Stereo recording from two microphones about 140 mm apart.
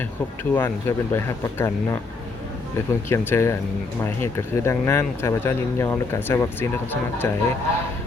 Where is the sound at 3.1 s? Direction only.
15° left (ahead or behind).